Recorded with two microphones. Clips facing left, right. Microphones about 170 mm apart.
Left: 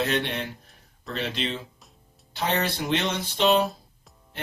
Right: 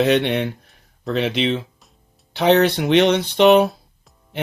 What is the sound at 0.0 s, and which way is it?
Speech, 70° right (ahead or behind).